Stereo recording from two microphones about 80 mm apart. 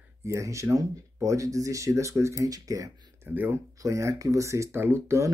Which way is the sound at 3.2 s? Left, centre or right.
Right.